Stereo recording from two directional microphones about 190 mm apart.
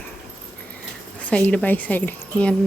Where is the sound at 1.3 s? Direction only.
5° left (ahead or behind).